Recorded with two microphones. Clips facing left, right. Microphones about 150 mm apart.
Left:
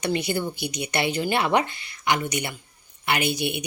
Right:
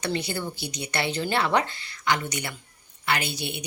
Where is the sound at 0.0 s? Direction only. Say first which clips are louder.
Left 4 dB; 20° left (ahead or behind).